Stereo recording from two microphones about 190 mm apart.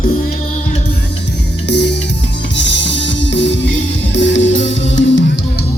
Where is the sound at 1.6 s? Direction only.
65° left (ahead or behind).